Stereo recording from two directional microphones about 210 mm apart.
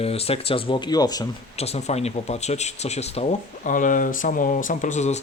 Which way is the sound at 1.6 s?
30° left (ahead or behind).